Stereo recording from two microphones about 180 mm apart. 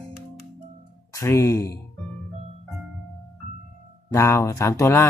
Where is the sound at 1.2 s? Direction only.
15° left (ahead or behind).